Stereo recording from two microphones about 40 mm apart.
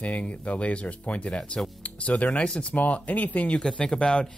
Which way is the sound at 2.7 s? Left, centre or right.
Left.